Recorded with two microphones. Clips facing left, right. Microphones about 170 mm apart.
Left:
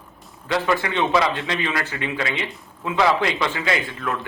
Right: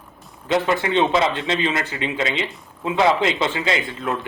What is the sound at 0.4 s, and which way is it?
A man's voice, 20° right (ahead or behind).